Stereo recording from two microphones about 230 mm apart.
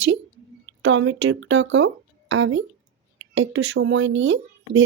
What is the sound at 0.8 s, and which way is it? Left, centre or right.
Speech, right.